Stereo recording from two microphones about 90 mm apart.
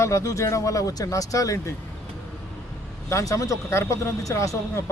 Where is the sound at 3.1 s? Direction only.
35° left (ahead or behind).